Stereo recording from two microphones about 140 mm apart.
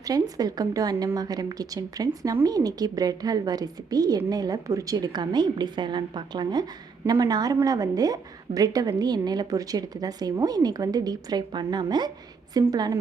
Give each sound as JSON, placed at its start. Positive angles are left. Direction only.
{"t": 0.0, "sound": "a woman's voice", "side_deg": -25}